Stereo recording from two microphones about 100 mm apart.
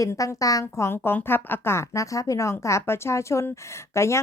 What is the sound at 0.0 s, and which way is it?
A woman's voice, 30° left (ahead or behind).